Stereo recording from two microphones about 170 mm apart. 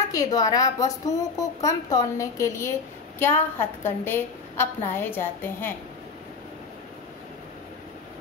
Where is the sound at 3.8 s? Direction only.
15° left (ahead or behind).